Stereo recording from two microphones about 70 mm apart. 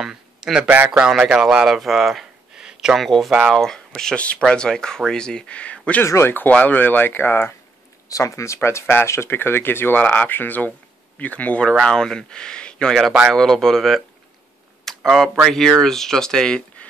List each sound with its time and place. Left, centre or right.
0.0 s a sound: centre
0.8 s speech: centre
1.8 s a sound: centre
3.0 s speech: centre
3.6 s speech: centre
6.0 s speech: left
6.3 s speech: left
8.1 s speech: left; by 12.9 s centre
12.9 s speech: centre